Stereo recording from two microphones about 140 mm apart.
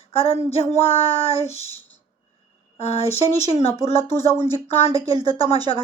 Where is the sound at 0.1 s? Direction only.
45° left (ahead or behind).